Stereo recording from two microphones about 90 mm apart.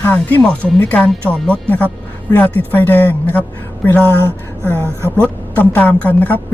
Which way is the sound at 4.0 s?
30° right (ahead or behind).